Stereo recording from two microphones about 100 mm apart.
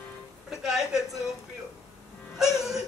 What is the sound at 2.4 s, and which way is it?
Speech, 5° right (ahead or behind).